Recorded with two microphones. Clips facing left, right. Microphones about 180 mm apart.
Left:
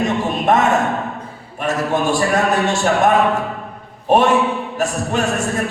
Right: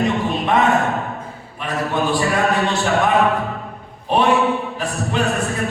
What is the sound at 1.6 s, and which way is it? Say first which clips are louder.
Speech: left 3 dB; 45° left (ahead or behind).